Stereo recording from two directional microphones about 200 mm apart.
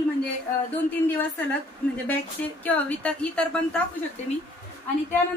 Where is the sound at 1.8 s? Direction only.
5° left (ahead or behind).